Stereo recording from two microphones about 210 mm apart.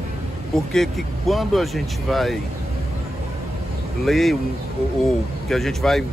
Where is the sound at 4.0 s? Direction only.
Centre (ahead or behind).